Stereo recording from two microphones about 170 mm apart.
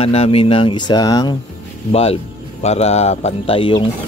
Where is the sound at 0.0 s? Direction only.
35° left (ahead or behind).